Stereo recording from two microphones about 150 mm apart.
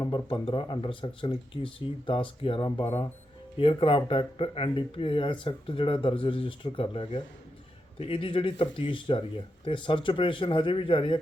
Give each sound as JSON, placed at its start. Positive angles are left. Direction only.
{"t": 0.0, "sound": "speech", "side_deg": 30}
{"t": 2.6, "sound": "speech", "side_deg": 25}